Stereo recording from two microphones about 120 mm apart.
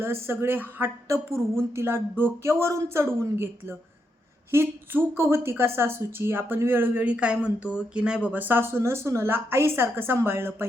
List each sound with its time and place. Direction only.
0.0 s a woman's voice: 20° right (ahead or behind)